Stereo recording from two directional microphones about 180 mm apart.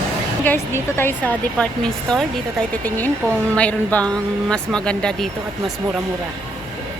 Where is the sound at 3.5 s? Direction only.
5° left (ahead or behind).